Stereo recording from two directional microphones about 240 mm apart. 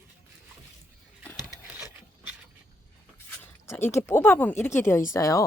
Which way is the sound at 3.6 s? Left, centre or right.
Centre.